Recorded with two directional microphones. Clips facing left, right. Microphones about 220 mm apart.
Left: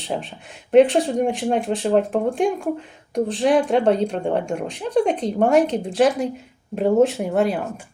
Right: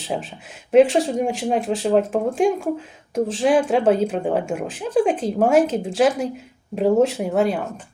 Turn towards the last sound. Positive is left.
turn(degrees=0)  # may be behind; listen again after turning